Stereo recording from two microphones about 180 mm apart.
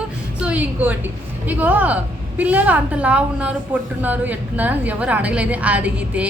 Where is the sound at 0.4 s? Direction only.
10° right (ahead or behind).